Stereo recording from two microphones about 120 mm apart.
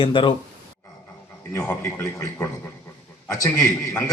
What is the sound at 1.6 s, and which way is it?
Speech, 15° left (ahead or behind).